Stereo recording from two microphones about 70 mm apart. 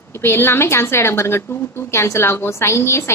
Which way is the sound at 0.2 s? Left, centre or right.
Left.